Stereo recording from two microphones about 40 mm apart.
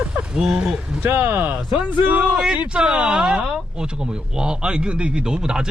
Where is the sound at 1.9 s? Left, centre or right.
Right.